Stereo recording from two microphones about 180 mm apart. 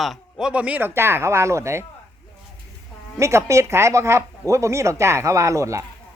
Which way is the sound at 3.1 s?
15° right (ahead or behind).